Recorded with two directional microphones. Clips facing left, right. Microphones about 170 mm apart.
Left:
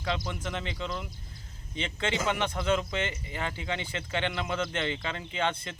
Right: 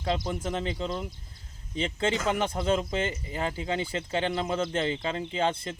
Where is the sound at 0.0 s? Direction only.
30° right (ahead or behind).